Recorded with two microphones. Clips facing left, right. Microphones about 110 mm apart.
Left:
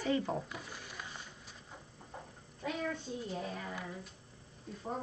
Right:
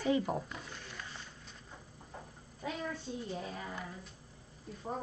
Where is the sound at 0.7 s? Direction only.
10° left (ahead or behind).